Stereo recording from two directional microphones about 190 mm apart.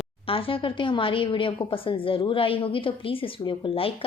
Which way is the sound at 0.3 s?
30° left (ahead or behind).